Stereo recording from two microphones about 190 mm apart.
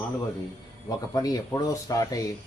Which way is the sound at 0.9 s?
20° left (ahead or behind).